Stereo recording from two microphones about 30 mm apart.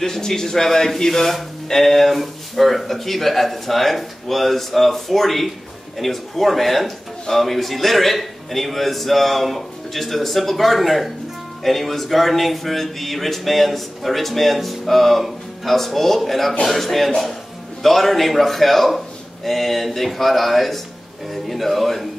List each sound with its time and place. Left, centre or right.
0.0 s a man's voice: centre